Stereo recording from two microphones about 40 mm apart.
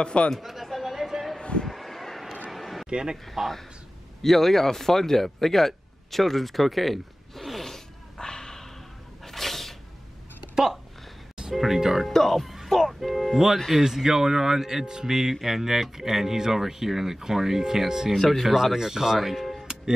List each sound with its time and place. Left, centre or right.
0.0 s speech: left
0.3 s chatter: centre
1.4 s a sound: left
1.7 s a sound: centre
2.9 s speech: centre
3.3 s speech: centre
9.2 s cat: centre
10.5 s a sound: centre
11.5 s music: centre
12.1 s music: centre
13.8 s speech: centre
18.1 s speech: centre
18.4 s speech: centre